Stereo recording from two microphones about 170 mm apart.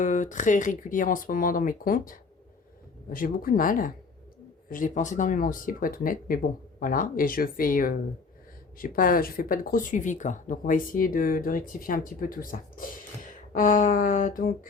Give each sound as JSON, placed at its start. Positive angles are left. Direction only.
{"t": 0.0, "sound": "speech", "side_deg": 45}